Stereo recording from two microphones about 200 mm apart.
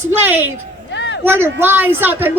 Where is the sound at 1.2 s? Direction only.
10° right (ahead or behind).